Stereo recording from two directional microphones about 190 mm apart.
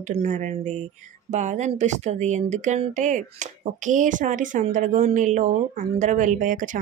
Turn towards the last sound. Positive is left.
turn(degrees=-45)  # may be behind; listen again after turning